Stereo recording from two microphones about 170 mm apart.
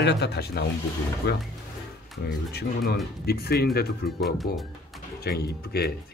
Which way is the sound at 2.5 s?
65° left (ahead or behind).